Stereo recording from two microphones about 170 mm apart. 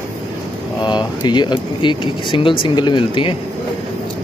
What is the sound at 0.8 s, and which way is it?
Speech, 25° left (ahead or behind).